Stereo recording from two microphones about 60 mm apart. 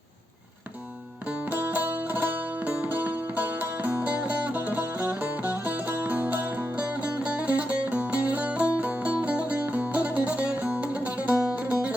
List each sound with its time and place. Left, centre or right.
1.5 s music: right